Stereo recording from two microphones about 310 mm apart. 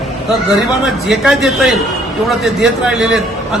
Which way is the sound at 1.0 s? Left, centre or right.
Centre.